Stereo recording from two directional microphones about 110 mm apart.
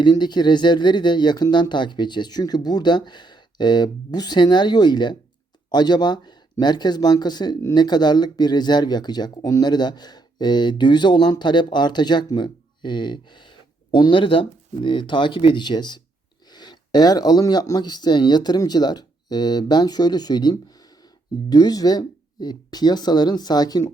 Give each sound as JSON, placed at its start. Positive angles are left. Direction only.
{"t": 0.0, "sound": "speech", "side_deg": 40}